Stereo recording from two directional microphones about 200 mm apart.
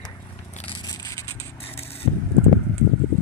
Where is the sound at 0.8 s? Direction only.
20° left (ahead or behind).